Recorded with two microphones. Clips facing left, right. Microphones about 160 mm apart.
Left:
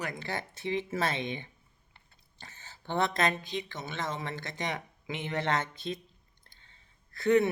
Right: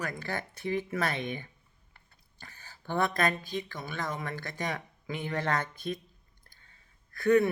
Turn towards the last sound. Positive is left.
turn(degrees=25)  # may be behind; listen again after turning